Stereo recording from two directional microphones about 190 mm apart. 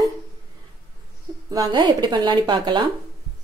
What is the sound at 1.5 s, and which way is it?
Speech, 20° right (ahead or behind).